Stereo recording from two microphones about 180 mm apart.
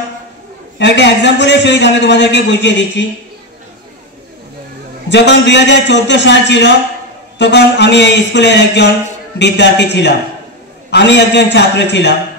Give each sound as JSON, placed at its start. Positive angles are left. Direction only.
{"t": 0.7, "sound": "a man's voice", "side_deg": 75}
{"t": 5.1, "sound": "a man's voice", "side_deg": 75}